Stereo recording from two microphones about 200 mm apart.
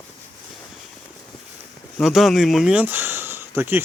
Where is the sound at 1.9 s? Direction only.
Centre (ahead or behind).